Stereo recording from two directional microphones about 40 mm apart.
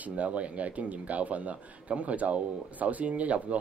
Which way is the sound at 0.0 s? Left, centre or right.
Right.